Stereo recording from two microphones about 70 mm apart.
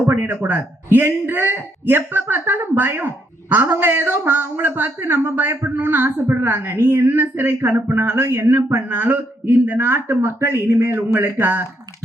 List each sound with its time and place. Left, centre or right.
0.0 s a man's voice: right
0.3 s a man's voice: right